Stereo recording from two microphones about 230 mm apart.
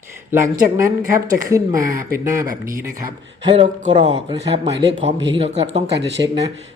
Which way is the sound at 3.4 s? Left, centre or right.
Right.